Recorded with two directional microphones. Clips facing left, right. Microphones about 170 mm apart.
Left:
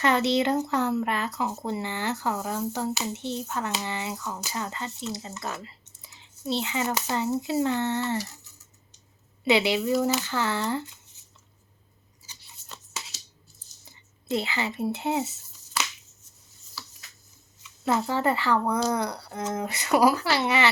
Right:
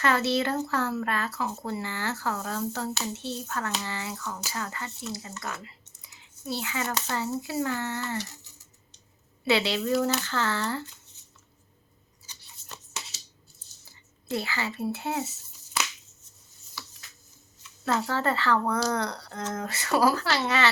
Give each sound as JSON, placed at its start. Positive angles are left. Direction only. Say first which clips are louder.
{"t": 0.0, "sound": "speech", "louder": "left 2 dB", "side_deg": 20}
{"t": 9.4, "sound": "speech", "louder": "left 3 dB", "side_deg": 15}
{"t": 12.7, "sound": "scissors", "louder": "left 1 dB", "side_deg": 0}
{"t": 13.8, "sound": "speech", "louder": "left 4 dB", "side_deg": 20}
{"t": 17.8, "sound": "speech", "louder": "left 2 dB", "side_deg": 15}